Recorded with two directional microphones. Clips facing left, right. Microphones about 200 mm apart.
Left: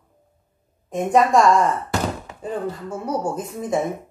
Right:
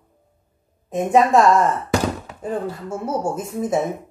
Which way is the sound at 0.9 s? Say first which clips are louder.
Right 1 dB; 5° right (ahead or behind).